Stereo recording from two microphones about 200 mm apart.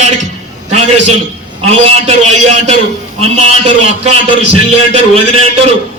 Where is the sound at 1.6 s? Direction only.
30° right (ahead or behind).